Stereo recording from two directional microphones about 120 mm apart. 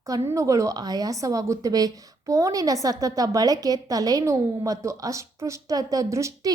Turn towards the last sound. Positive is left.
turn(degrees=-25)  # may be behind; listen again after turning